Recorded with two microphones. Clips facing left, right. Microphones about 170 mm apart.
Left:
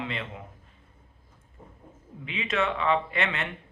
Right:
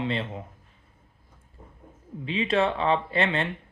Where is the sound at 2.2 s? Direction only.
30° right (ahead or behind).